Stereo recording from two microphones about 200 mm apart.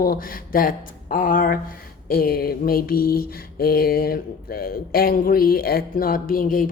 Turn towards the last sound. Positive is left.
turn(degrees=45)  # may be behind; listen again after turning